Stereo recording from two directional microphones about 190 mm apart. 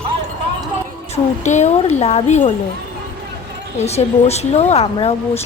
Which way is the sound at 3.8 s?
35° left (ahead or behind).